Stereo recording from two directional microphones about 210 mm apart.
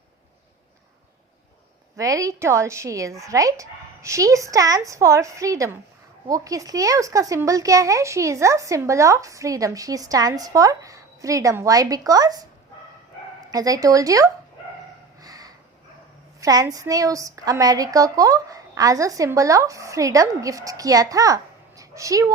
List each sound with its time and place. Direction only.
2.0 s speech: 15° right (ahead or behind)
13.5 s speech: 15° right (ahead or behind)
15.2 s a sound: 15° right (ahead or behind)
16.4 s speech: 15° right (ahead or behind)